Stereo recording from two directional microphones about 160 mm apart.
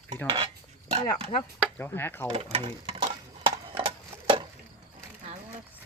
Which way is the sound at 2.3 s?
35° right (ahead or behind).